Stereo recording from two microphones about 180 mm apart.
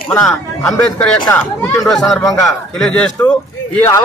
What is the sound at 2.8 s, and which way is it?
Speech, 5° left (ahead or behind).